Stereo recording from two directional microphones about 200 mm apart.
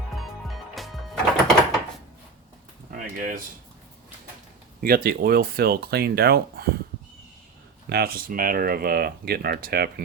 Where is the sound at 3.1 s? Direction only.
45° right (ahead or behind).